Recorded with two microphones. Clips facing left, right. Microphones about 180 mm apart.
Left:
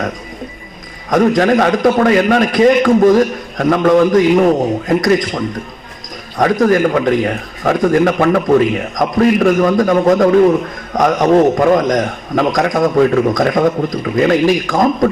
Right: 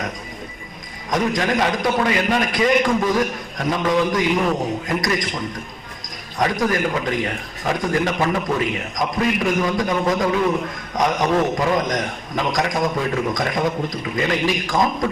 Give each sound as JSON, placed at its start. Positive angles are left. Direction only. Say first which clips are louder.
{"t": 1.1, "sound": "a man's voice", "louder": "left 9 dB", "side_deg": 50}